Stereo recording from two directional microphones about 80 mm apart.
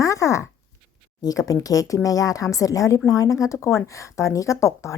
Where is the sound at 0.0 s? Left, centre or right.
Left.